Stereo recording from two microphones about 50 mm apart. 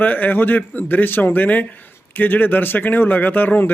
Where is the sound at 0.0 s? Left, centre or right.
Left.